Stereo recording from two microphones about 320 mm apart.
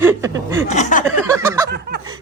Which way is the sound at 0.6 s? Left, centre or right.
Left.